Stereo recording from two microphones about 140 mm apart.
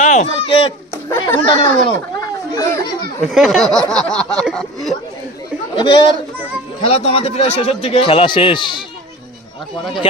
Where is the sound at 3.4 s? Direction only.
Centre (ahead or behind).